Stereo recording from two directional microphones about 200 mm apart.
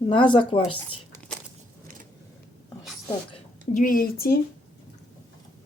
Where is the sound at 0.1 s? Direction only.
25° left (ahead or behind).